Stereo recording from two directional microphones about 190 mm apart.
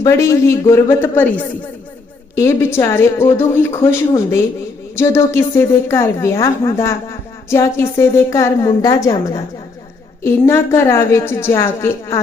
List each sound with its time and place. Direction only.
0.0 s a woman's voice: 15° left (ahead or behind)